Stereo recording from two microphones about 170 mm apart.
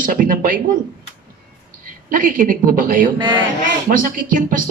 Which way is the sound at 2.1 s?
55° right (ahead or behind).